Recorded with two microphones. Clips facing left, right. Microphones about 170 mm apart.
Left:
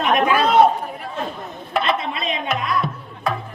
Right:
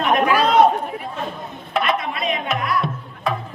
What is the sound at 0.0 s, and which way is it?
Chatter, 20° left (ahead or behind).